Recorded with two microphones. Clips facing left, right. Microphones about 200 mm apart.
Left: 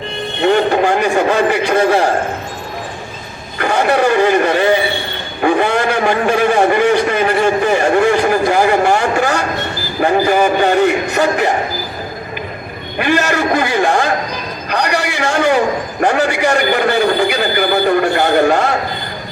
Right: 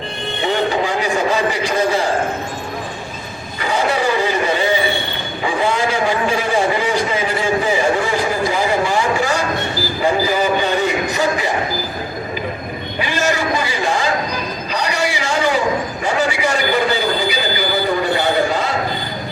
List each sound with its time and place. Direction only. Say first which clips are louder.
0.4 s a man's voice: left 6 dB; 60° left (ahead or behind)
3.6 s a man's voice: left 5 dB; 60° left (ahead or behind)
13.0 s a man's voice: left 5 dB; 60° left (ahead or behind)
14.7 s a sound: left 4 dB; 60° left (ahead or behind)